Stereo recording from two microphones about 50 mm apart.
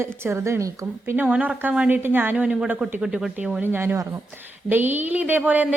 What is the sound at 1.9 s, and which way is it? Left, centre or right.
Speech, right.